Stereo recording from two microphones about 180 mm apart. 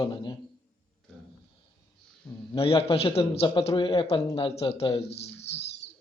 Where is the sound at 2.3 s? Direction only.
15° left (ahead or behind).